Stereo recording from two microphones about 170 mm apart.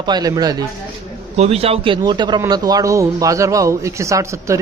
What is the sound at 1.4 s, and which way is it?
A man's voice, 35° right (ahead or behind).